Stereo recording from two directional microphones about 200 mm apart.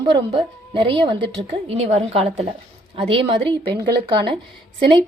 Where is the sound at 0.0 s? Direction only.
25° right (ahead or behind).